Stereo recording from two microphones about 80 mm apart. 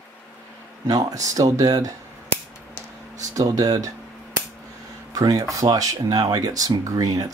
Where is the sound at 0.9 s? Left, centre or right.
Right.